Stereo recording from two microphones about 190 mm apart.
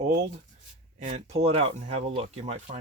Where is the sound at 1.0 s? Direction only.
30° right (ahead or behind).